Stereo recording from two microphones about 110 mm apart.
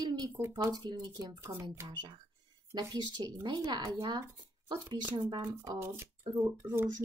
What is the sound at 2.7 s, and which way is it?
Speech, 40° right (ahead or behind).